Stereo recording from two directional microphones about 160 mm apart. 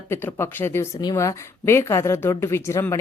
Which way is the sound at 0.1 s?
15° left (ahead or behind).